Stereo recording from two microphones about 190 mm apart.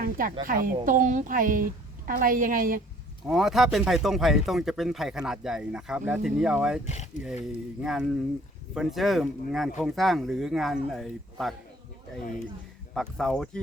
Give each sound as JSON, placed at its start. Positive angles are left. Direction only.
{"t": 0.0, "sound": "a woman's voice", "side_deg": -45}
{"t": 3.2, "sound": "speech", "side_deg": 0}
{"t": 6.8, "sound": "speech", "side_deg": 35}
{"t": 7.3, "sound": "speech", "side_deg": 0}
{"t": 12.9, "sound": "speech", "side_deg": 0}